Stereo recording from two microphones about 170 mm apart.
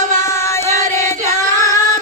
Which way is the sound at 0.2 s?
15° left (ahead or behind).